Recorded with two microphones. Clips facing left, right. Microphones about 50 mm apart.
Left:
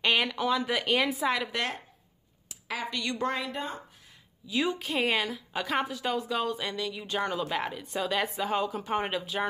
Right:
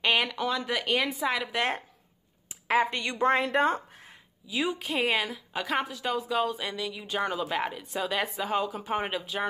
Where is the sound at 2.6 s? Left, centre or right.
Right.